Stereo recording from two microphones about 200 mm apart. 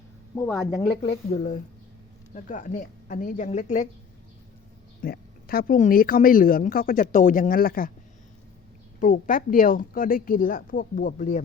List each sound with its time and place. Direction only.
0.3 s a woman's voice: 15° left (ahead or behind)
0.8 s a woman's voice: 35° left (ahead or behind)
5.0 s a woman's voice: 50° left (ahead or behind)
9.0 s a woman's voice: 40° left (ahead or behind)